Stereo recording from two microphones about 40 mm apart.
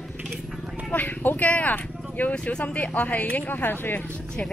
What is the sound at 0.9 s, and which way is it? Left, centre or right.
Speech, left.